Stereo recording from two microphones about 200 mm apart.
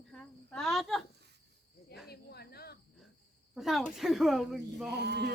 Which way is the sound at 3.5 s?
Centre (ahead or behind).